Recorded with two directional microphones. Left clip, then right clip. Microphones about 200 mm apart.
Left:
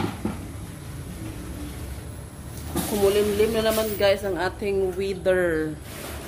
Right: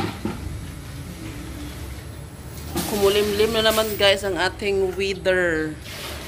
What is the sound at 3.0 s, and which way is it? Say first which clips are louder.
Speech: right 2 dB; centre (ahead or behind).